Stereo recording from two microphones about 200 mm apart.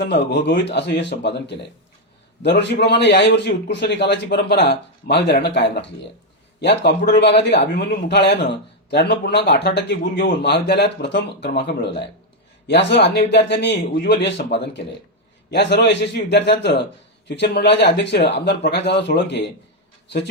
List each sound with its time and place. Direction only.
0.3 s speech: 60° left (ahead or behind)